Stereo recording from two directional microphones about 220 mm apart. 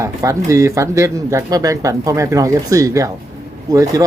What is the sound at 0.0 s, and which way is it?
Speech, 15° right (ahead or behind).